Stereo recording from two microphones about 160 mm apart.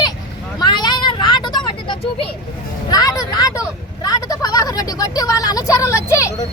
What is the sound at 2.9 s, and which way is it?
A woman's voice, 25° left (ahead or behind).